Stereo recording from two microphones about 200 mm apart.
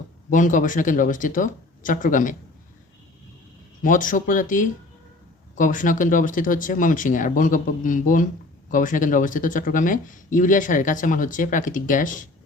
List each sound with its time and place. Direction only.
0.3 s speech: 40° left (ahead or behind)
3.8 s speech: 40° left (ahead or behind)